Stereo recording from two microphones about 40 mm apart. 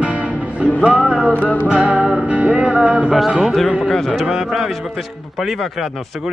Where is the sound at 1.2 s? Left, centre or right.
Left.